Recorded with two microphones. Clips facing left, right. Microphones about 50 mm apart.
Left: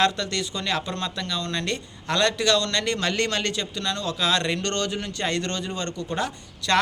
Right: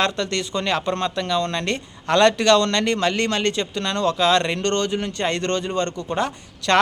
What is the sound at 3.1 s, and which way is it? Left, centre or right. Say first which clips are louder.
A man's voice: right 4 dB; right.